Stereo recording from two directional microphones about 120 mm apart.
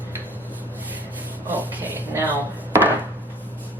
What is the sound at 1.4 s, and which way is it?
Speech, 15° right (ahead or behind).